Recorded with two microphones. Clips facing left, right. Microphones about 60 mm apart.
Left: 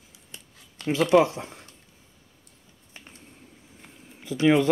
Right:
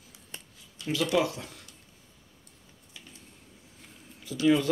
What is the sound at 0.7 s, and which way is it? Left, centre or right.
Speech, left.